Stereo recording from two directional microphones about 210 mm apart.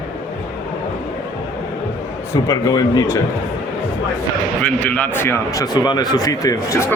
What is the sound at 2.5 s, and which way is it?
Speech, 20° left (ahead or behind).